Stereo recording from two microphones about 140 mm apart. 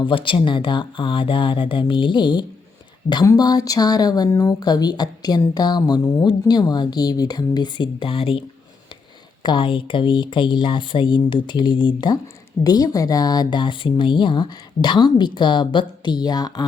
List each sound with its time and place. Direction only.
0.0 s speech: 40° left (ahead or behind)